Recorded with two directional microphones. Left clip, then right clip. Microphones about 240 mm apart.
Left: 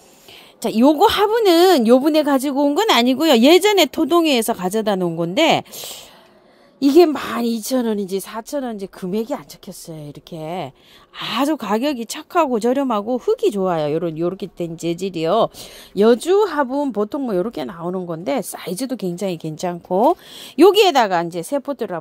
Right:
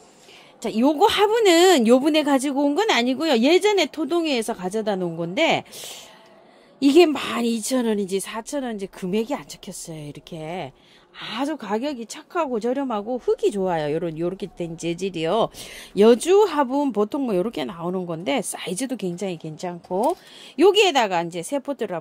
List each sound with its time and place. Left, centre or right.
0.6 s speech: left
6.8 s a woman's voice: centre
11.1 s speech: left; by 21.9 s centre